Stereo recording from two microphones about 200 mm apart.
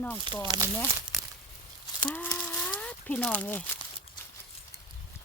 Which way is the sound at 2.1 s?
5° left (ahead or behind).